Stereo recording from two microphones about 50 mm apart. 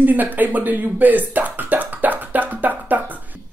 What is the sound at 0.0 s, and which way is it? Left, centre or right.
Throat clearing, right.